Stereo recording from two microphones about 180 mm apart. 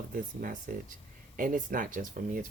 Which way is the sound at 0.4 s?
50° right (ahead or behind).